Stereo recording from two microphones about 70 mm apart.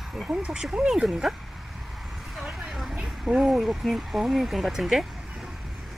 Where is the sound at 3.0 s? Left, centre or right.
Centre.